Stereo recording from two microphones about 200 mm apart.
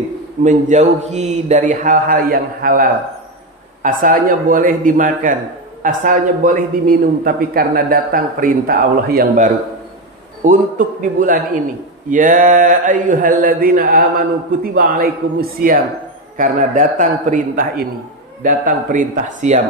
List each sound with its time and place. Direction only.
0.4 s a man's voice: 35° right (ahead or behind)